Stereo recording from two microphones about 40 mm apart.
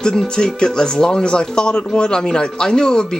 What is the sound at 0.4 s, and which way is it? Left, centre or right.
Speech, centre.